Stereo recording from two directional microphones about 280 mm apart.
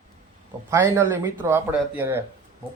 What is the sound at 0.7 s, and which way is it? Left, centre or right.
Speech, centre.